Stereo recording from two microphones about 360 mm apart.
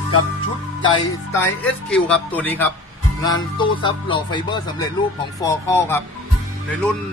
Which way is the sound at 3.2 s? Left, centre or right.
Centre.